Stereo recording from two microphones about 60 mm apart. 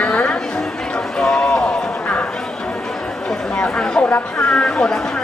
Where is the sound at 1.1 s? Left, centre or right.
Centre.